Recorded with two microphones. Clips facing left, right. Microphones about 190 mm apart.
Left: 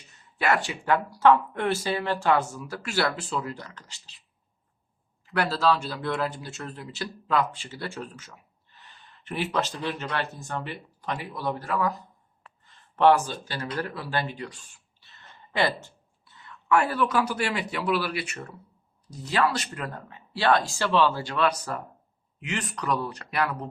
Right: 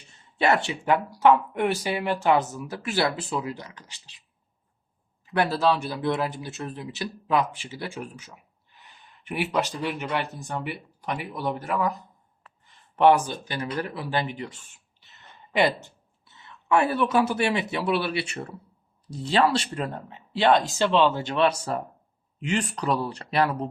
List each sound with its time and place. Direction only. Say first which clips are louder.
0.1 s a man's voice: right 3 dB; 25° right (ahead or behind)
5.2 s a man's voice: right 2 dB; 20° right (ahead or behind)